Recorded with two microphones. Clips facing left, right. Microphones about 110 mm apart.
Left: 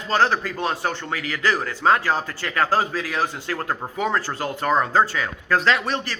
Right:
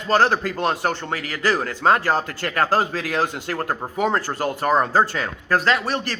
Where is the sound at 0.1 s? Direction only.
45° right (ahead or behind).